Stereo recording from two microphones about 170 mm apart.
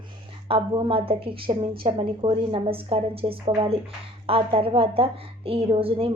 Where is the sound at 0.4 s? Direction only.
30° right (ahead or behind).